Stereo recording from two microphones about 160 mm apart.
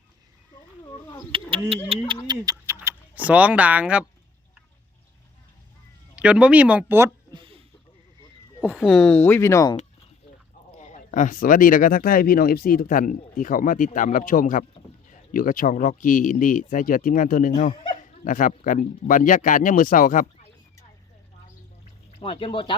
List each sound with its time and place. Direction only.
1.3 s speech: 35° right (ahead or behind)
2.2 s speech: 25° right (ahead or behind); by 4.0 s 10° right (ahead or behind)
6.1 s speech: 5° right (ahead or behind)
7.3 s a sound: 35° right (ahead or behind)
8.6 s speech: 5° right (ahead or behind); by 9.7 s 20° left (ahead or behind)
10.8 s speech: 50° left (ahead or behind)
22.2 s speech: 35° left (ahead or behind)